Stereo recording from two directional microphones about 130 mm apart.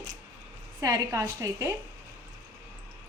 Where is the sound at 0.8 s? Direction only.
25° right (ahead or behind).